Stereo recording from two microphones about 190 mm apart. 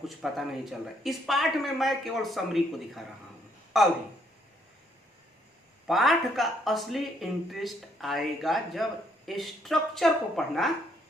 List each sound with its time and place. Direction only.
0.0 s speech: centre (ahead or behind)
5.9 s speech: centre (ahead or behind)